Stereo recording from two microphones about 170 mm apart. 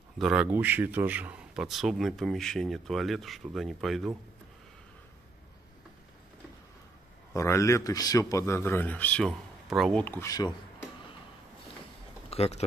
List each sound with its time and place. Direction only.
0.2 s speech: 5° right (ahead or behind)
7.3 s speech: 15° left (ahead or behind); by 10.0 s centre (ahead or behind)
10.0 s speech: 15° left (ahead or behind)
12.3 s speech: 40° left (ahead or behind)